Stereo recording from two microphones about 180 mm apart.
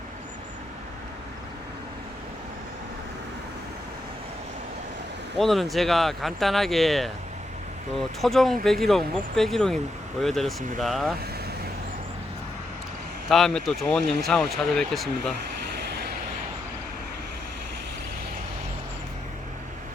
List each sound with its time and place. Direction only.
5.4 s speech: centre (ahead or behind)
13.2 s speech: centre (ahead or behind)